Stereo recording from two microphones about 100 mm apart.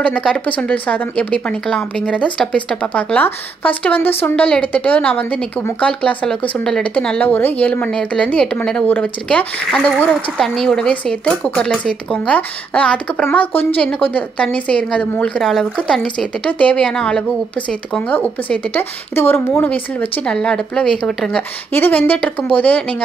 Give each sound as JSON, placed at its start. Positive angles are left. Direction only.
{"t": 0.0, "sound": "a woman's voice", "side_deg": 10}
{"t": 21.4, "sound": "a woman's voice", "side_deg": 20}